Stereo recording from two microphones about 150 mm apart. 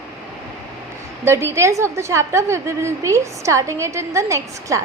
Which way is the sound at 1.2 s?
20° right (ahead or behind).